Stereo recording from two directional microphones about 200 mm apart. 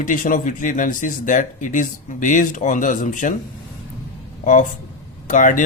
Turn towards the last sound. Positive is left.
turn(degrees=40)  # may be behind; listen again after turning